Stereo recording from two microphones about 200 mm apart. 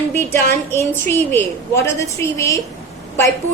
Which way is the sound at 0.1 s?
15° left (ahead or behind).